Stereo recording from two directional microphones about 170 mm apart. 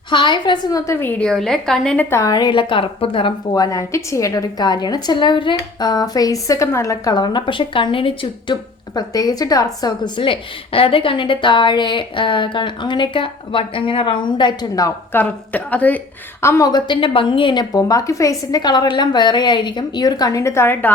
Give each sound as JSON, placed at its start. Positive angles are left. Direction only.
{"t": 0.1, "sound": "a woman's voice", "side_deg": 25}
{"t": 2.0, "sound": "a woman's voice", "side_deg": 20}